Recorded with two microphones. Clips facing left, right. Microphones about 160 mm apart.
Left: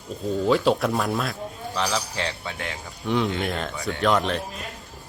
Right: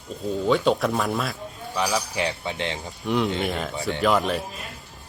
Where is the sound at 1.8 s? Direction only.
15° right (ahead or behind).